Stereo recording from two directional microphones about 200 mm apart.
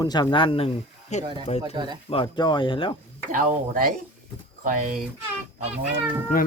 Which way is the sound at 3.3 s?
45° right (ahead or behind).